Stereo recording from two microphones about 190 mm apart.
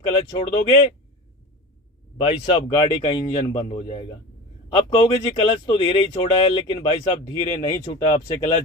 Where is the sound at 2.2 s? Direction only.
25° left (ahead or behind).